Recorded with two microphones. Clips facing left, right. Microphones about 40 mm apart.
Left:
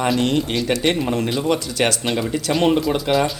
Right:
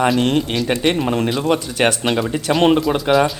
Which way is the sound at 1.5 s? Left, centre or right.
Right.